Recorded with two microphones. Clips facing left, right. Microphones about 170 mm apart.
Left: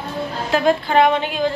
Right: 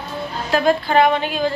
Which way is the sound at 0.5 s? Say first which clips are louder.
Even; 20° left (ahead or behind).